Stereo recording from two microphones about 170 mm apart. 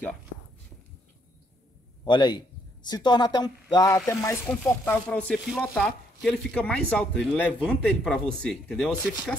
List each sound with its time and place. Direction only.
2.0 s a woman's voice: 25° left (ahead or behind); by 9.1 s centre (ahead or behind)